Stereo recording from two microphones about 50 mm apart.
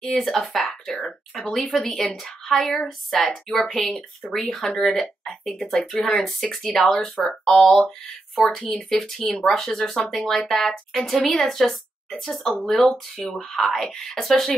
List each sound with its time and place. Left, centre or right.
0.1 s a sound: centre
1.7 s speech: centre
4.4 s speech: centre